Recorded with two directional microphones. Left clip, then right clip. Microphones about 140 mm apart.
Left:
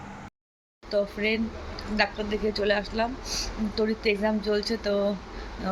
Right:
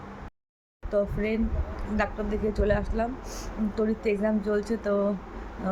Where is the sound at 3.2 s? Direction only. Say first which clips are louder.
Left 3 dB; 15° right (ahead or behind).